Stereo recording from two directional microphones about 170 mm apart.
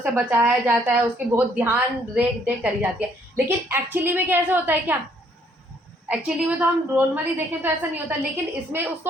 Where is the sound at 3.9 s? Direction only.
10° right (ahead or behind).